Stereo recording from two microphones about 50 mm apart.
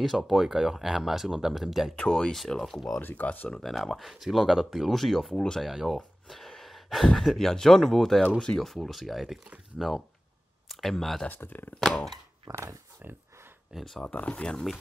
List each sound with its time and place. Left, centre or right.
0.0 s speech: centre
2.0 s speech: centre
2.3 s speech: centre
3.0 s speech: left
3.6 s speech: centre
11.3 s speech: left
12.4 s speech: right
13.7 s speech: centre
14.0 s speech: left